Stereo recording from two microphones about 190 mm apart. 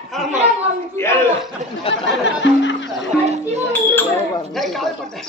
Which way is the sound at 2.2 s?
70° left (ahead or behind).